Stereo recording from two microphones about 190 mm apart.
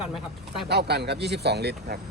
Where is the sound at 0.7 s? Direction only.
60° right (ahead or behind).